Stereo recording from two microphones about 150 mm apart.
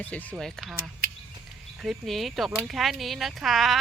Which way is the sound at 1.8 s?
Centre (ahead or behind).